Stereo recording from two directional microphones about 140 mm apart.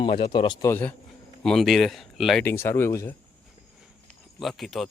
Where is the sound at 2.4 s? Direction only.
15° left (ahead or behind).